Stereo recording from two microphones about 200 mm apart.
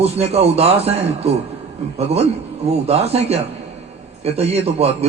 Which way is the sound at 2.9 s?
30° right (ahead or behind).